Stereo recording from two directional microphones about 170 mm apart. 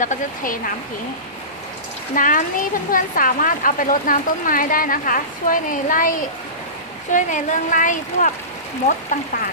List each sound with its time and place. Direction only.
0.0 s speech: 50° left (ahead or behind)
2.1 s speech: 50° left (ahead or behind)